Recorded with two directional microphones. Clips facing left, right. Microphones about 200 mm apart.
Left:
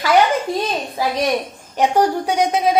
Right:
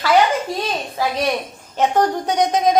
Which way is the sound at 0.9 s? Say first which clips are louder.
Left 1 dB; 15° left (ahead or behind).